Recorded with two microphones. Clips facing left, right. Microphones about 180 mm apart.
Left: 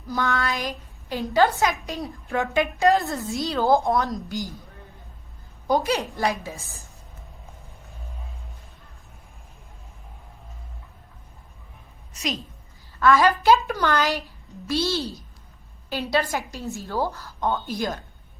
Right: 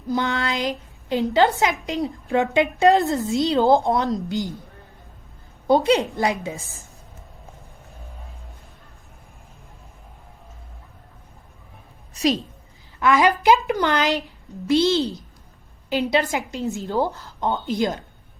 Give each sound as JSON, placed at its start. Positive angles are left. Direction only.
{"t": 0.1, "sound": "a woman's voice", "side_deg": -20}
{"t": 5.6, "sound": "a woman's voice", "side_deg": -25}
{"t": 12.1, "sound": "a sound", "side_deg": -35}
{"t": 13.0, "sound": "a woman's voice", "side_deg": -15}